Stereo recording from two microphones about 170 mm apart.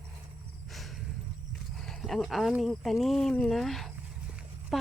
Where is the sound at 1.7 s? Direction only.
Centre (ahead or behind).